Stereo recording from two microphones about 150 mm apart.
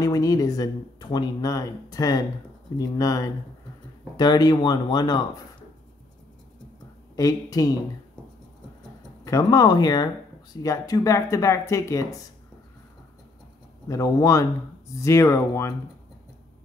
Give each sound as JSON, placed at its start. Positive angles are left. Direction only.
{"t": 0.0, "sound": "speech", "side_deg": 25}
{"t": 7.2, "sound": "speech", "side_deg": 25}
{"t": 9.2, "sound": "speech", "side_deg": 25}
{"t": 13.8, "sound": "speech", "side_deg": 20}